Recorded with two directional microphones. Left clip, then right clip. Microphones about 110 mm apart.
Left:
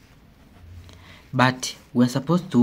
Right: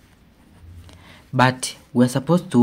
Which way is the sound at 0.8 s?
35° right (ahead or behind).